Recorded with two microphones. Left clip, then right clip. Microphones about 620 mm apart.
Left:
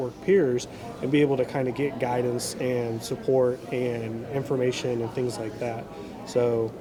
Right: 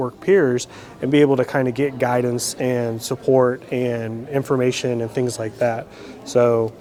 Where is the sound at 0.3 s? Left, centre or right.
Right.